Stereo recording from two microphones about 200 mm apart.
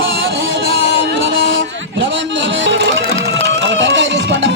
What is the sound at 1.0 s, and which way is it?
Music, 65° right (ahead or behind).